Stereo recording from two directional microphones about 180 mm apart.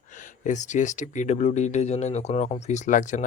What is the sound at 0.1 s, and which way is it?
Speech, 45° left (ahead or behind).